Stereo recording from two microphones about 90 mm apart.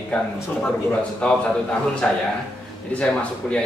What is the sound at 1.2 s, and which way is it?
A man's voice, 15° left (ahead or behind).